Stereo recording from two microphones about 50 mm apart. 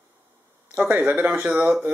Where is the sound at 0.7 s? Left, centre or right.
Right.